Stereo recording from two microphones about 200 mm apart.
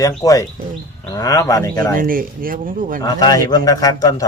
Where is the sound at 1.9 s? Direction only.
45° right (ahead or behind).